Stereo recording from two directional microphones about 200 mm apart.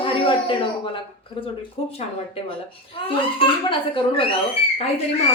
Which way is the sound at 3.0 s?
25° left (ahead or behind).